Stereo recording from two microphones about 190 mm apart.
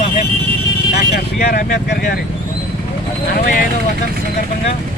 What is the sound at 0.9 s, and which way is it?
Speech, 55° left (ahead or behind).